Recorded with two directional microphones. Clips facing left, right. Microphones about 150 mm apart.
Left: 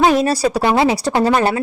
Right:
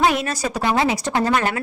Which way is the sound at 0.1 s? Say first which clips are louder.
Left 8 dB; 35° left (ahead or behind).